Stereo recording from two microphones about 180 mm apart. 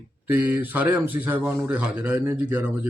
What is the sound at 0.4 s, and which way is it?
A man's voice, 10° right (ahead or behind).